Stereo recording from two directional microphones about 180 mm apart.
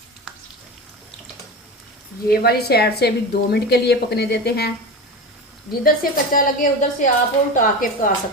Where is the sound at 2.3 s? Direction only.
60° left (ahead or behind).